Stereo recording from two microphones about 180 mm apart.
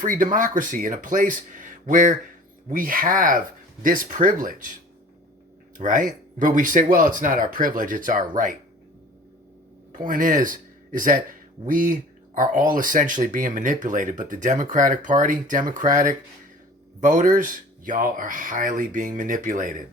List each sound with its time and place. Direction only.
0.0 s speech: 45° right (ahead or behind)
5.7 s speech: 45° right (ahead or behind)
9.9 s speech: 50° right (ahead or behind)